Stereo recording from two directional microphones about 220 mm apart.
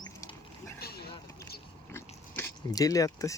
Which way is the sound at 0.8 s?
45° left (ahead or behind).